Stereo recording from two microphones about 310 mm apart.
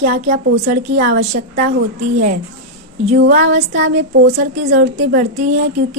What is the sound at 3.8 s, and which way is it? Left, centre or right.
A woman's voice, right.